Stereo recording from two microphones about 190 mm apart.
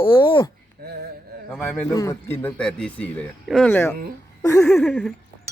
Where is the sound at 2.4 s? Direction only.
5° left (ahead or behind).